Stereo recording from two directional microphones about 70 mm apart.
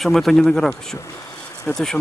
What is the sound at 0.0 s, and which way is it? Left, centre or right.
Speech, centre.